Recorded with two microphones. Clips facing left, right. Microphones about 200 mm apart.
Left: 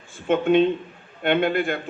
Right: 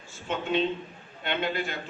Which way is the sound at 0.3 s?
55° left (ahead or behind).